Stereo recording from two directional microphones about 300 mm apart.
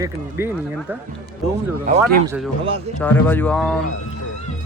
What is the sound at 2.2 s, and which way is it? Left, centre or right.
Speech, centre.